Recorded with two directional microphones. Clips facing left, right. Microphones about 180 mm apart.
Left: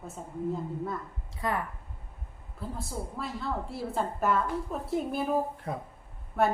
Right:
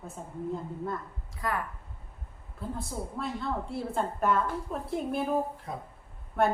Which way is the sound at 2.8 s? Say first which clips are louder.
Even; centre (ahead or behind).